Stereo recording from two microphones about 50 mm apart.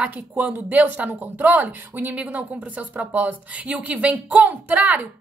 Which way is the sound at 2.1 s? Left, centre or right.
Right.